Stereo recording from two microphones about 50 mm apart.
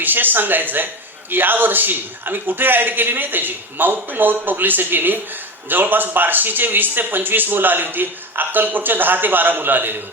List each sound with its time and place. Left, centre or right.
0.0 s speech: right